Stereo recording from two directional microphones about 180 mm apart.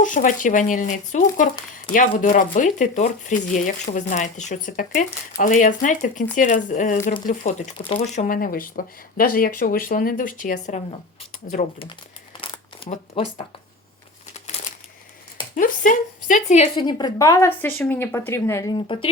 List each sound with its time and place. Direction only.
0.0 s speech: 45° left (ahead or behind)
8.4 s speech: 50° left (ahead or behind)
11.2 s speech: 30° left (ahead or behind)
12.4 s crumpling: 30° left (ahead or behind)
13.2 s speech: 30° left (ahead or behind)
14.3 s crumpling: 40° left (ahead or behind)
15.5 s speech: 50° left (ahead or behind)
16.7 s speech: 25° left (ahead or behind)